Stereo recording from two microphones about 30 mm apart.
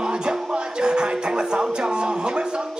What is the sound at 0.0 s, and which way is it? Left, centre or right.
Music, right.